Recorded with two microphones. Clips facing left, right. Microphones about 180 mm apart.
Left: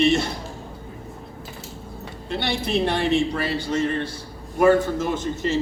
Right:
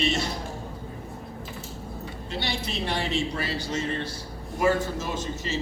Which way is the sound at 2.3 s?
55° left (ahead or behind).